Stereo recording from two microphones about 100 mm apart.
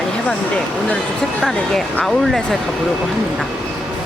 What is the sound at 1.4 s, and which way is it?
Speech, 5° left (ahead or behind).